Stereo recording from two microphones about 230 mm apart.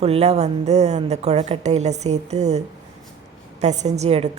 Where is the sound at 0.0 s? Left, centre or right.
Right.